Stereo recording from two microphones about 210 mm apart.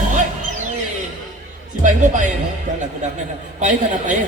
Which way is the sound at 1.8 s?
35° right (ahead or behind).